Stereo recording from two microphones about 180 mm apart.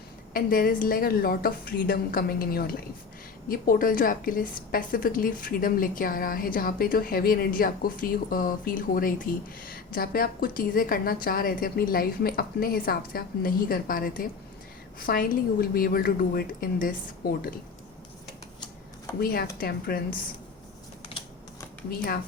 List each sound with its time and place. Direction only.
0.3 s a woman's voice: 50° left (ahead or behind)
19.2 s a woman's voice: 55° left (ahead or behind)
21.8 s a woman's voice: 55° left (ahead or behind)